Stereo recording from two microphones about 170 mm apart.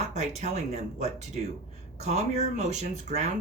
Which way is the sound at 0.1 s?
40° right (ahead or behind).